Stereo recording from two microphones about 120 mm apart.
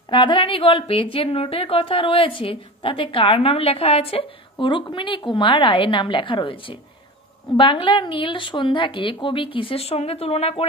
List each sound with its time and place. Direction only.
0.1 s a woman's voice: 40° left (ahead or behind); by 10.6 s 55° left (ahead or behind)